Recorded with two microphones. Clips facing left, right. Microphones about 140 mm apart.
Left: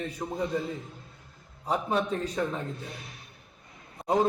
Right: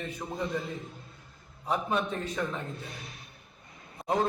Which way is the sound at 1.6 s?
35° left (ahead or behind).